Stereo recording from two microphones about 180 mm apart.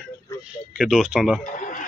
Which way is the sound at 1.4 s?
45° left (ahead or behind).